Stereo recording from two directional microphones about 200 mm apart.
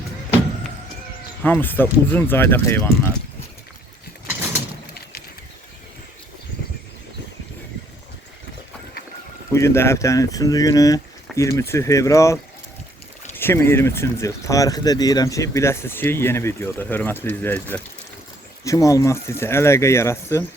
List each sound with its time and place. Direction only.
1.5 s speech: 10° left (ahead or behind)
9.5 s speech: 15° left (ahead or behind)